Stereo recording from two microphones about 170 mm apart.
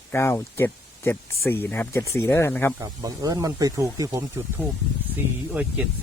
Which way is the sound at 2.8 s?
20° right (ahead or behind).